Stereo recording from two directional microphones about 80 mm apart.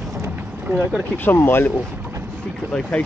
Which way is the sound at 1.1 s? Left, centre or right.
Left.